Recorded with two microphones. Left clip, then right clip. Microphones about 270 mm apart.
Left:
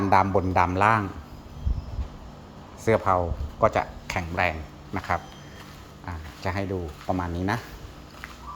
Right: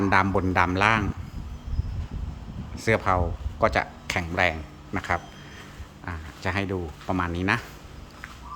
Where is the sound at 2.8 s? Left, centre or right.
Centre.